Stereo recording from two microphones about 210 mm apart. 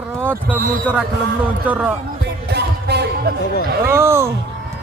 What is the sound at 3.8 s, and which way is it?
Speech, 15° right (ahead or behind).